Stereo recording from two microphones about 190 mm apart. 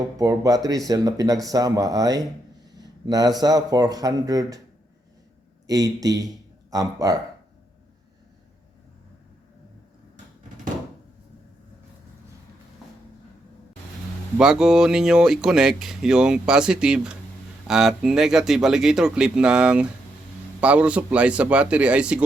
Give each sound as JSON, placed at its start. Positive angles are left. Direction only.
{"t": 0.2, "sound": "speech", "side_deg": -20}
{"t": 5.6, "sound": "speech", "side_deg": -20}
{"t": 14.3, "sound": "speech", "side_deg": -5}